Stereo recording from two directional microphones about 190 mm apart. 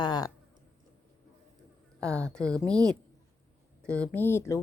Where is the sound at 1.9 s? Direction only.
15° right (ahead or behind).